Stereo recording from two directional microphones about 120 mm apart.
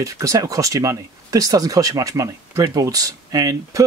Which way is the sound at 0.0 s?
25° right (ahead or behind).